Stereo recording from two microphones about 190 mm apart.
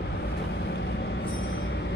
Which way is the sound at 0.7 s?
60° left (ahead or behind).